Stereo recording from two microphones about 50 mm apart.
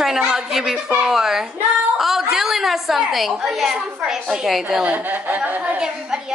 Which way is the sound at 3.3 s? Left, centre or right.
Centre.